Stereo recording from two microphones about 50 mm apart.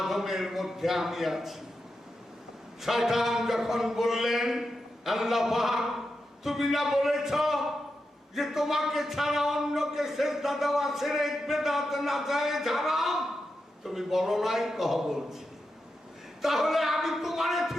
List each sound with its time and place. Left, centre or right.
0.0 s speech: centre
2.8 s speech: centre
16.4 s speech: centre